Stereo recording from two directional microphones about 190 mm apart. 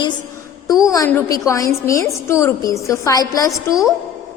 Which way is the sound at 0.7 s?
20° left (ahead or behind).